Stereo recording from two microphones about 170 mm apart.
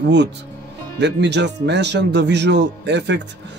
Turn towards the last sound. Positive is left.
turn(degrees=-90)